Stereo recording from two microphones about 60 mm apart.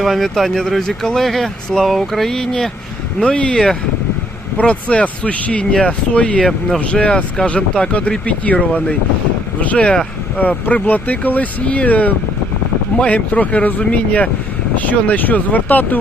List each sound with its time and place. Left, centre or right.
0.0 s speech: centre
10.7 s speech: left